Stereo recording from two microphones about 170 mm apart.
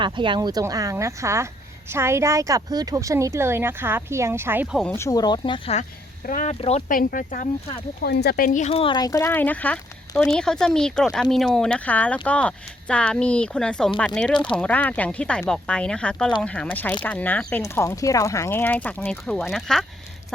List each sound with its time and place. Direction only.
0.0 s a woman's voice: 30° right (ahead or behind); by 4.8 s 10° right (ahead or behind)
4.8 s speech: 15° left (ahead or behind); by 5.8 s 35° left (ahead or behind)
6.2 s speech: 50° left (ahead or behind)
6.6 s speech: 40° left (ahead or behind)
6.8 s speech: 55° left (ahead or behind)
8.0 s speech: 75° left (ahead or behind)
8.4 s speech: 45° left (ahead or behind); by 19.8 s centre (ahead or behind)